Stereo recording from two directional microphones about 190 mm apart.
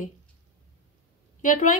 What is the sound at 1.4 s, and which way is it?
Speech, 45° left (ahead or behind).